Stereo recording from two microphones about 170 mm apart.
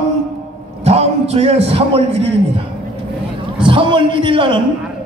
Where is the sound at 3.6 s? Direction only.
30° right (ahead or behind).